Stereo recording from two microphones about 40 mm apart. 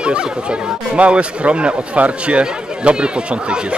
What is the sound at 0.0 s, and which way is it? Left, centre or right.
Speech, right.